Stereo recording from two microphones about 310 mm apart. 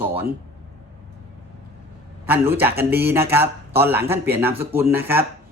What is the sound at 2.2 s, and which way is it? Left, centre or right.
Speech, centre.